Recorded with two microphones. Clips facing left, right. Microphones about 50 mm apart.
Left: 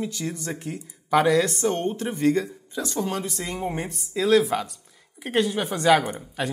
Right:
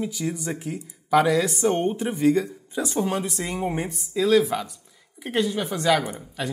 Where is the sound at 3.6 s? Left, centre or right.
Centre.